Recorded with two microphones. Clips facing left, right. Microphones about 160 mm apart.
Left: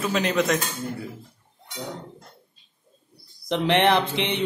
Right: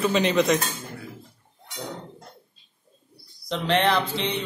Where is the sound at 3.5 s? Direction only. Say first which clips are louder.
Left 2 dB; 20° left (ahead or behind).